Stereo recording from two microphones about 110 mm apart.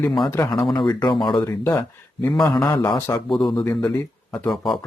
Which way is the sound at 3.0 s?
20° left (ahead or behind).